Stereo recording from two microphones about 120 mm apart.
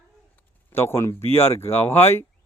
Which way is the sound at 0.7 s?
20° left (ahead or behind).